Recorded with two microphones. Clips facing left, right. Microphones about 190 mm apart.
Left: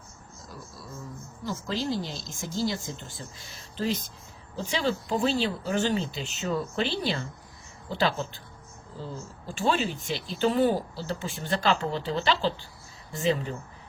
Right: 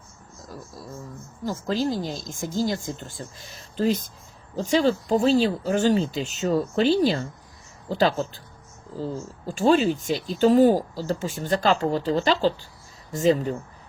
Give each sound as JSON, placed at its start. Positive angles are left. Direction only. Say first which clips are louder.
{"t": 1.5, "sound": "speech", "louder": "right 5 dB", "side_deg": -45}
{"t": 9.6, "sound": "speech", "louder": "right 8 dB", "side_deg": -40}